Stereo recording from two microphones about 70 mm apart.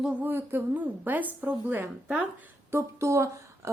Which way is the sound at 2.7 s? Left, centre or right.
Right.